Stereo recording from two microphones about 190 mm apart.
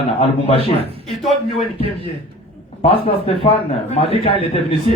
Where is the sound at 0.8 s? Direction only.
30° right (ahead or behind).